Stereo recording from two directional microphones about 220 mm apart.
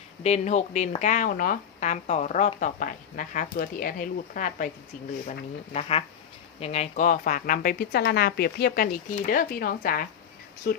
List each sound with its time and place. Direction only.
0.2 s speech: 30° left (ahead or behind)
5.7 s speech: 25° left (ahead or behind); by 10.8 s 40° left (ahead or behind)